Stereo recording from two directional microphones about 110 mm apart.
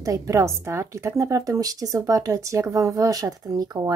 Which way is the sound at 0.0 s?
30° right (ahead or behind).